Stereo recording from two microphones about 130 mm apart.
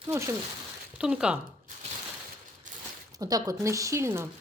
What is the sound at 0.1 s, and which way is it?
Speech, 20° right (ahead or behind).